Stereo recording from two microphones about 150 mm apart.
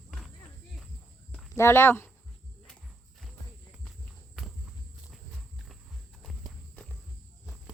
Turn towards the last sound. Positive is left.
turn(degrees=0)  # may be behind; listen again after turning